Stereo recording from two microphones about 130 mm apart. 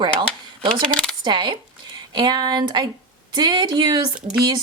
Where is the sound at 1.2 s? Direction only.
35° right (ahead or behind).